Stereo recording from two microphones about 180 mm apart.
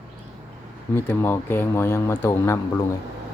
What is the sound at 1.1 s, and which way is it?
Speech, 10° left (ahead or behind).